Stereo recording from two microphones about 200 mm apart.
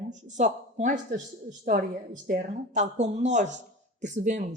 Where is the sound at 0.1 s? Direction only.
35° right (ahead or behind).